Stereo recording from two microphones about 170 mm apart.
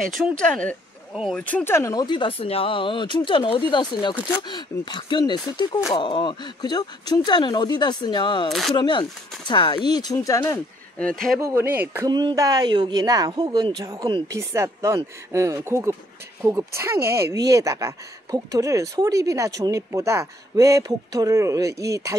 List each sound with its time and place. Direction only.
0.0 s speech: 5° left (ahead or behind)
1.4 s speech: 10° left (ahead or behind); by 8.5 s 25° left (ahead or behind)
8.5 s speech: centre (ahead or behind)
8.7 s speech: 25° left (ahead or behind)
11.0 s speech: 5° left (ahead or behind)
11.4 s speech: 10° right (ahead or behind)
12.1 s speech: 25° right (ahead or behind)